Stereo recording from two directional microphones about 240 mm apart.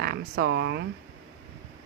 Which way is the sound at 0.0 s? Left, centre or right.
Right.